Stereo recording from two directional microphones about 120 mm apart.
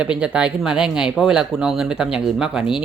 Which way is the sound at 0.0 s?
10° right (ahead or behind).